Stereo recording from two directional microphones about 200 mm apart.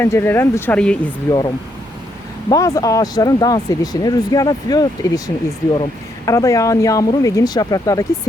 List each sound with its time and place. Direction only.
0.0 s speech: 10° left (ahead or behind)
1.3 s speech: 20° left (ahead or behind)